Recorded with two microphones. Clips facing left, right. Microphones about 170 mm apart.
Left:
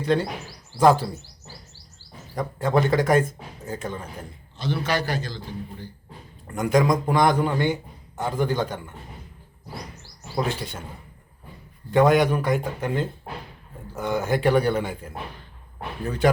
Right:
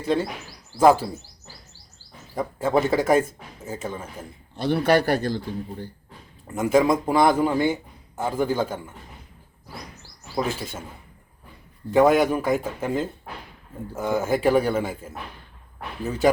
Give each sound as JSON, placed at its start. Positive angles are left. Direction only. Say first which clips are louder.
{"t": 0.0, "sound": "speech", "louder": "left 1 dB", "side_deg": -5}
{"t": 2.3, "sound": "a man's voice", "louder": "right 1 dB", "side_deg": -5}
{"t": 4.5, "sound": "a man's voice", "louder": "right 6 dB", "side_deg": -60}
{"t": 6.5, "sound": "a man's voice", "louder": "right 1 dB", "side_deg": -5}
{"t": 10.3, "sound": "a man's voice", "louder": "even", "side_deg": -5}
{"t": 11.9, "sound": "a man's voice", "louder": "right 1 dB", "side_deg": -5}